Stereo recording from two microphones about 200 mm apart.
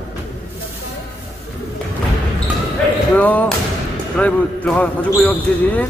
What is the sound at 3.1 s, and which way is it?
Basketball bounce, 10° left (ahead or behind).